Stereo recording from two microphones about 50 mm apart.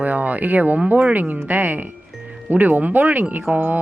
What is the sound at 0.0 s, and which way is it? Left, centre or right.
Speech, right.